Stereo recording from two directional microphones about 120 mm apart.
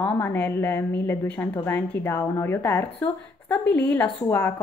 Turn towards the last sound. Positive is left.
turn(degrees=15)  # may be behind; listen again after turning